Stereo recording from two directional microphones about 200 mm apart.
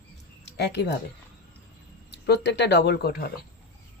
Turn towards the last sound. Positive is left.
turn(degrees=50)  # may be behind; listen again after turning